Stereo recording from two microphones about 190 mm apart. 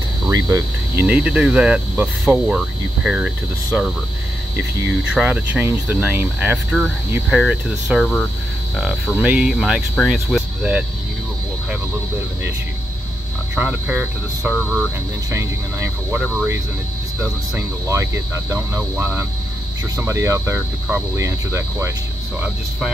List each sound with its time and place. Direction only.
0.3 s speech: 20° right (ahead or behind)
1.0 s speech: 5° right (ahead or behind)
5.1 s speech: 10° right (ahead or behind)
13.6 s speech: 10° right (ahead or behind)
14.5 s speech: 5° left (ahead or behind)
15.3 s speech: 10° right (ahead or behind)